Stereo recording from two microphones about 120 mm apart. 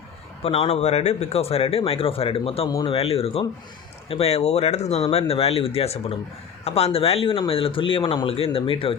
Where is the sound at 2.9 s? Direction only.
55° left (ahead or behind).